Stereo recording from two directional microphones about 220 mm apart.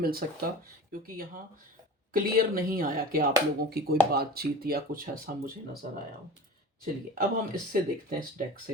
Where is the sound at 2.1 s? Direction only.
40° right (ahead or behind).